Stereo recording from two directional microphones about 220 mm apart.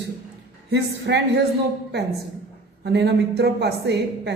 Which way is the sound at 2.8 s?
50° right (ahead or behind).